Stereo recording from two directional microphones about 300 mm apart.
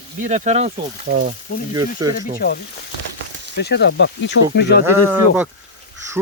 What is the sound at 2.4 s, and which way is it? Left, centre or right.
Speech, left.